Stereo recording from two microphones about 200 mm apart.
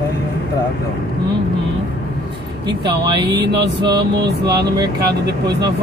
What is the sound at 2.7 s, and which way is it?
Speech, 25° right (ahead or behind).